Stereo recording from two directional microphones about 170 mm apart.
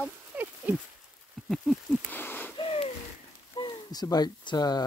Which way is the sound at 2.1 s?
10° left (ahead or behind).